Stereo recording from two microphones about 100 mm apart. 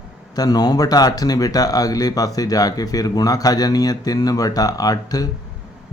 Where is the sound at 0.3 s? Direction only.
40° left (ahead or behind).